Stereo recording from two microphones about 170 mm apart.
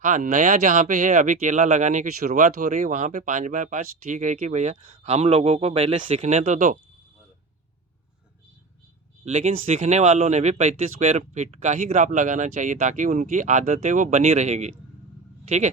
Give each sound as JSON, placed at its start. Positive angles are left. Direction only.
{"t": 0.0, "sound": "speech", "side_deg": -50}
{"t": 9.2, "sound": "speech", "side_deg": -40}